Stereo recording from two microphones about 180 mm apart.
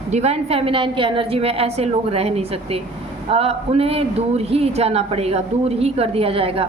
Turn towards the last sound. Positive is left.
turn(degrees=-30)  # may be behind; listen again after turning